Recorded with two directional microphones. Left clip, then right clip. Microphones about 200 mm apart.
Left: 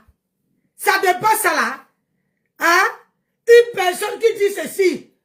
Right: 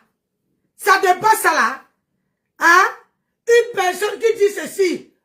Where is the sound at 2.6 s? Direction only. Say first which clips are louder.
Right 3 dB; 5° left (ahead or behind).